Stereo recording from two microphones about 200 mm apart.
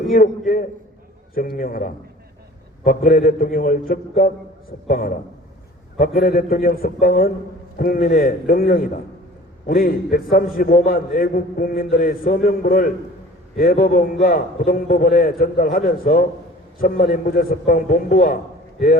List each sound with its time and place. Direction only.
0.1 s a man's voice: 45° left (ahead or behind)
6.1 s a man's voice: 50° left (ahead or behind)